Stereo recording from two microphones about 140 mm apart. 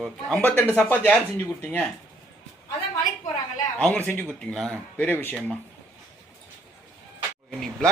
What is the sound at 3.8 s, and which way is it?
A man's voice, 10° left (ahead or behind).